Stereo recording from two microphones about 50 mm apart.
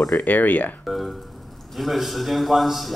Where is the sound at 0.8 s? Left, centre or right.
Centre.